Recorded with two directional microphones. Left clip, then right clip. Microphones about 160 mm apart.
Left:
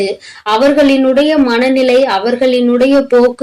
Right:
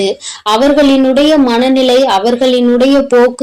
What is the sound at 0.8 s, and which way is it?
A woman's voice, 35° right (ahead or behind).